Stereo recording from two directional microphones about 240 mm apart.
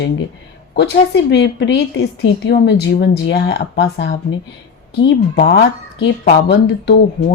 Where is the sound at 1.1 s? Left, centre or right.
Left.